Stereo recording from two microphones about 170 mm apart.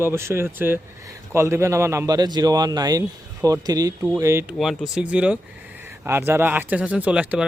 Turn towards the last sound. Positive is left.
turn(degrees=-5)  # may be behind; listen again after turning